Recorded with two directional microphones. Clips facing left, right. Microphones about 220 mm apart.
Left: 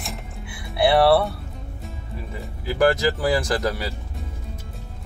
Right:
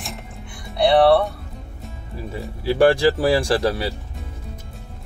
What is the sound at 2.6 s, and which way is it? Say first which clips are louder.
Speech: right 4 dB; 30° right (ahead or behind).